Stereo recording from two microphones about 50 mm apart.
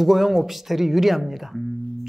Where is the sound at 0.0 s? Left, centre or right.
Centre.